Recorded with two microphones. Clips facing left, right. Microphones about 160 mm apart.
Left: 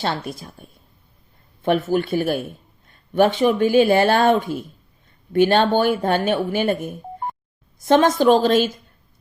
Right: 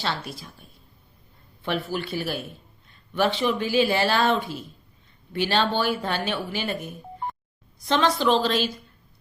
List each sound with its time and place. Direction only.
0.0 s a woman's voice: 45° left (ahead or behind)